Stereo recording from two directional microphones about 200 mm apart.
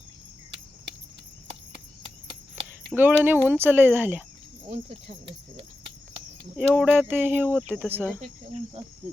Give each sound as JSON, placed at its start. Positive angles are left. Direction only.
{"t": 2.9, "sound": "speech", "side_deg": -10}
{"t": 4.7, "sound": "cricket", "side_deg": -30}
{"t": 6.6, "sound": "speech", "side_deg": -5}